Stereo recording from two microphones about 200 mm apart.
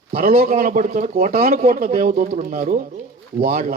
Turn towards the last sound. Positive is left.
turn(degrees=-45)  # may be behind; listen again after turning